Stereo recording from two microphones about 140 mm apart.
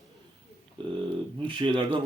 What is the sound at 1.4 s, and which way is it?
Speech, 35° right (ahead or behind).